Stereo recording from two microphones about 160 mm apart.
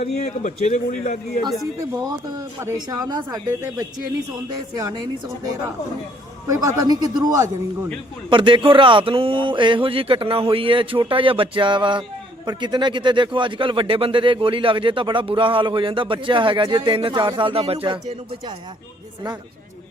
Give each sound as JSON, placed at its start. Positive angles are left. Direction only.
{"t": 0.0, "sound": "a man's voice", "side_deg": 45}
{"t": 1.8, "sound": "speech", "side_deg": -20}
{"t": 6.5, "sound": "speech", "side_deg": -20}